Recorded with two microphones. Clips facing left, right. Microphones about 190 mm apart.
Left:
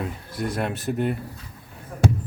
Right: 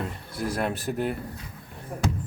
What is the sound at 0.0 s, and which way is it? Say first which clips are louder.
Speech: left 2 dB; centre (ahead or behind).